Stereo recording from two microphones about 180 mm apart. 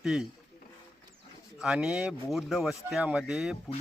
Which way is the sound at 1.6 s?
5° right (ahead or behind).